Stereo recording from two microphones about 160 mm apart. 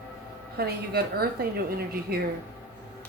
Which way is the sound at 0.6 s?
75° right (ahead or behind).